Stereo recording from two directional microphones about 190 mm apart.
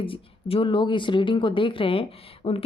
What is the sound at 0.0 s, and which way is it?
A woman's voice, 30° left (ahead or behind).